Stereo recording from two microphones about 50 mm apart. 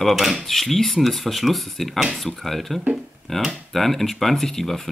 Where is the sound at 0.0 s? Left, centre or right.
Centre.